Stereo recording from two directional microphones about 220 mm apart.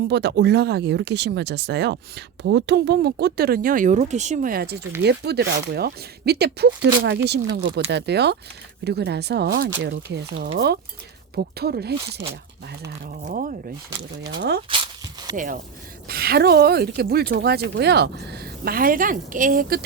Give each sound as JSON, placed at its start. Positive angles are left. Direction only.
{"t": 0.1, "sound": "speech", "side_deg": -50}
{"t": 13.1, "sound": "speech", "side_deg": -40}
{"t": 14.7, "sound": "a sound", "side_deg": -20}
{"t": 16.0, "sound": "speech", "side_deg": -45}